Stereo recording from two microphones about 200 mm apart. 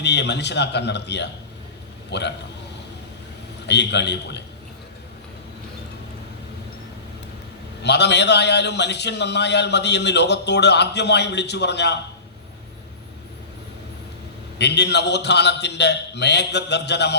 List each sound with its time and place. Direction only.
0.0 s a man's voice: 60° left (ahead or behind)
3.7 s a man's voice: 60° left (ahead or behind)
7.8 s a man's voice: 60° left (ahead or behind)
14.6 s a man's voice: 60° left (ahead or behind)